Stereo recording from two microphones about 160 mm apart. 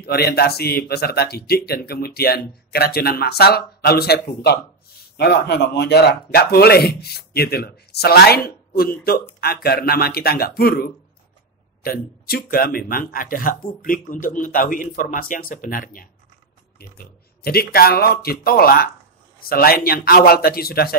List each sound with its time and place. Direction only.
0.0 s speech: 80° left
5.1 s speech: 90° left; by 16.1 s 60° left (ahead or behind)
16.7 s speech: 75° left (ahead or behind)